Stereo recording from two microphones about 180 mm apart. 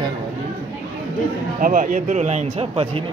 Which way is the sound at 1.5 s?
50° right (ahead or behind).